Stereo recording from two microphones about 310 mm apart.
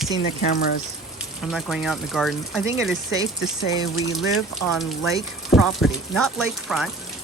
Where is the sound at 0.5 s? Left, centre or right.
Left.